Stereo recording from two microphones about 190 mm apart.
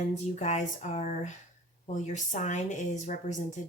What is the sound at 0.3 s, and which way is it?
Speech, 40° left (ahead or behind).